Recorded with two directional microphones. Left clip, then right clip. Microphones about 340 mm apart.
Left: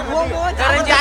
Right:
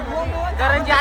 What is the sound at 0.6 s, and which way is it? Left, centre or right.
Speech, centre.